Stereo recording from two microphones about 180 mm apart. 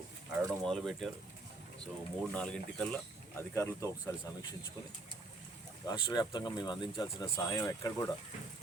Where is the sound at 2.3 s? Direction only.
5° left (ahead or behind).